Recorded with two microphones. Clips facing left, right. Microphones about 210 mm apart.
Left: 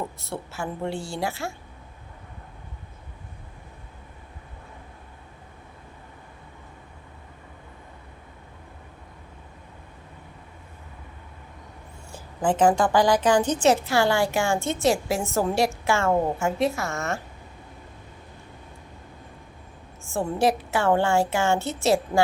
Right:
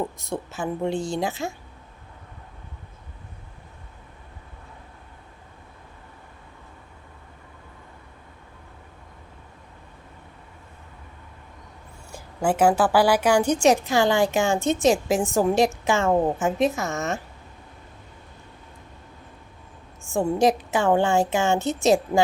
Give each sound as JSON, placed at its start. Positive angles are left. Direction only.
{"t": 0.2, "sound": "a woman's voice", "side_deg": -15}
{"t": 12.1, "sound": "a woman's voice", "side_deg": -10}
{"t": 20.1, "sound": "a woman's voice", "side_deg": -15}